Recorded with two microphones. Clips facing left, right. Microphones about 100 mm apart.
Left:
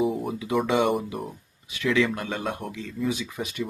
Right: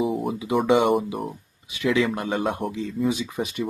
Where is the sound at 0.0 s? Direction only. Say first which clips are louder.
Right 1 dB; centre (ahead or behind).